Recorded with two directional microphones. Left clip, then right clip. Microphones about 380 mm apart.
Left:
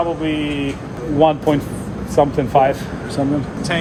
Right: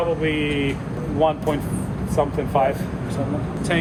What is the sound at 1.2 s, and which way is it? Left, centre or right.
Speech, left.